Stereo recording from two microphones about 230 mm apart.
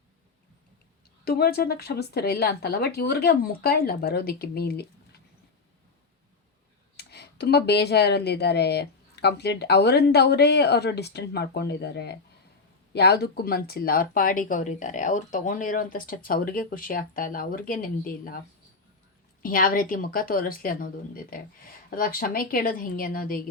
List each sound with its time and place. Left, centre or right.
1.2 s speech: left
6.9 s speech: left
19.4 s speech: left